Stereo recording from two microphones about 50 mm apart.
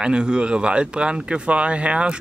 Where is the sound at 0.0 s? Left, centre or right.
Centre.